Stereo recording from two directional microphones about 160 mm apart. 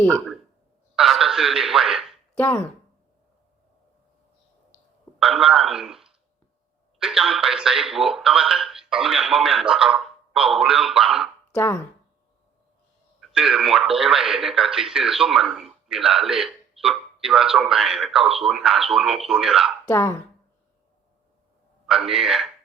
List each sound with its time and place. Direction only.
0.9 s a sound: centre (ahead or behind)
2.4 s speech: 15° left (ahead or behind)
5.2 s speech: centre (ahead or behind)
11.5 s speech: 15° left (ahead or behind)
13.1 s speech: 5° right (ahead or behind)
19.9 s speech: 15° left (ahead or behind)
21.8 s speech: centre (ahead or behind)